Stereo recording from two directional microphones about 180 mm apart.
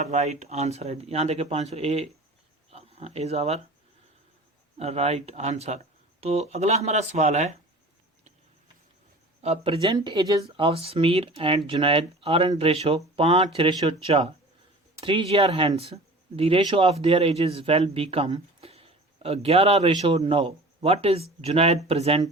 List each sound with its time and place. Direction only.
0.0 s speech: 40° right (ahead or behind)
4.8 s speech: 35° right (ahead or behind)
9.4 s speech: 30° right (ahead or behind)